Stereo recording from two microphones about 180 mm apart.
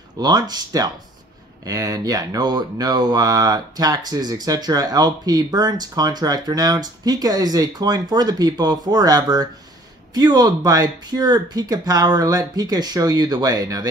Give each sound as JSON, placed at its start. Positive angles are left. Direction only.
{"t": 0.2, "sound": "speech", "side_deg": -20}